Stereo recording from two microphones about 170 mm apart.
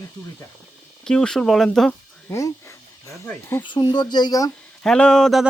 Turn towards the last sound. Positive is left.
turn(degrees=0)  # may be behind; listen again after turning